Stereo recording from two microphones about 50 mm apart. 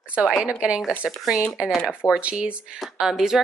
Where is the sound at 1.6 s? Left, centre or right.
Right.